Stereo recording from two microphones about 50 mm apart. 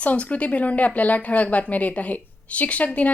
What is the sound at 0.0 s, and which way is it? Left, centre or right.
A woman's voice, left.